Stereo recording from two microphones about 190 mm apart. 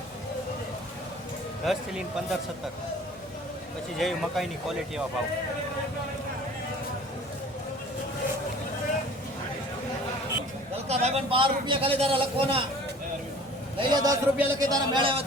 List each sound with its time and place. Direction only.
1.6 s speech: centre (ahead or behind)
3.9 s speech: centre (ahead or behind)
10.8 s a man's voice: 35° right (ahead or behind)
13.7 s a man's voice: 20° right (ahead or behind)